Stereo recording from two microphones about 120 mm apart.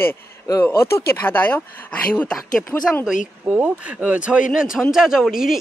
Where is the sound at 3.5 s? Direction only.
15° right (ahead or behind).